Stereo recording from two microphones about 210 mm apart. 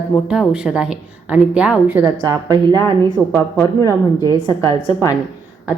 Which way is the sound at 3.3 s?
10° left (ahead or behind).